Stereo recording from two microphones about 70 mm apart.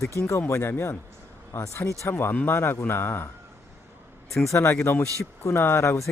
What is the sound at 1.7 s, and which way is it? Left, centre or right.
Speech, left.